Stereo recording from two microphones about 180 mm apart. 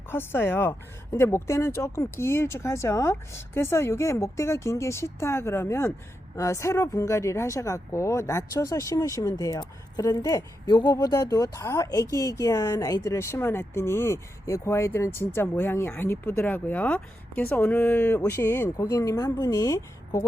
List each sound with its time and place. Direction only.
0.1 s speech: 10° left (ahead or behind)